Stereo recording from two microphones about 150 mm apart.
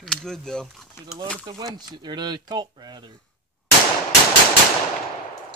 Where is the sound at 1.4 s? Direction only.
25° right (ahead or behind).